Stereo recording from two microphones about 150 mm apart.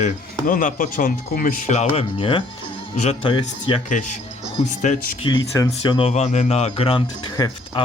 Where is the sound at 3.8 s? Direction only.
55° left (ahead or behind).